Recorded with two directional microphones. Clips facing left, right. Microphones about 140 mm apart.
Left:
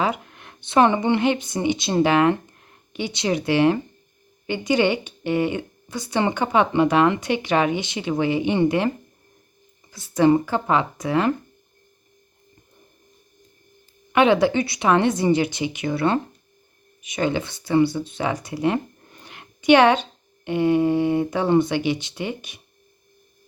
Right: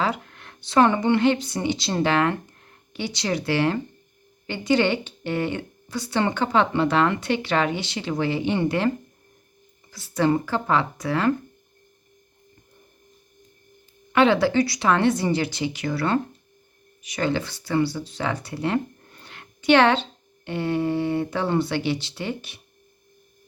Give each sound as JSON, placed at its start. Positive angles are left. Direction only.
{"t": 0.0, "sound": "speech", "side_deg": 15}
{"t": 9.9, "sound": "a woman's voice", "side_deg": 20}
{"t": 14.1, "sound": "a woman's voice", "side_deg": 15}